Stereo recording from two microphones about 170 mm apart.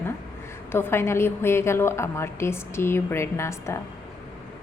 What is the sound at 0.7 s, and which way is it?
Speech, 15° left (ahead or behind).